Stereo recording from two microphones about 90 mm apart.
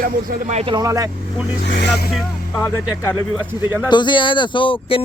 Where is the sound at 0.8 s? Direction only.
40° right (ahead or behind).